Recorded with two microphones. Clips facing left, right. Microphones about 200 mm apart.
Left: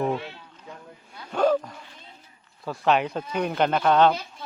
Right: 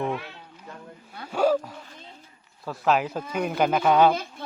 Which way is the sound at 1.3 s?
5° right (ahead or behind).